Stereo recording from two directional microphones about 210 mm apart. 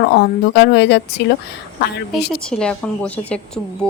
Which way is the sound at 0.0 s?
50° left (ahead or behind).